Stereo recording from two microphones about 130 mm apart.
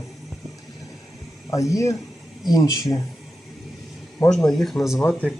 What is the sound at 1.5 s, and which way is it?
Speech, 25° left (ahead or behind).